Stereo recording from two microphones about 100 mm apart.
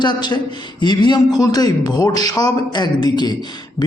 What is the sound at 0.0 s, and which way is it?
A man's voice, 45° left (ahead or behind).